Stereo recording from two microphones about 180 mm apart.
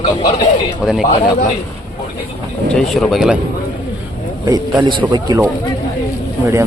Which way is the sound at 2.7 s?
Centre (ahead or behind).